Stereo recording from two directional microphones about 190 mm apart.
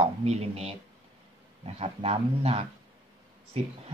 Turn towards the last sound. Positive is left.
turn(degrees=-35)  # may be behind; listen again after turning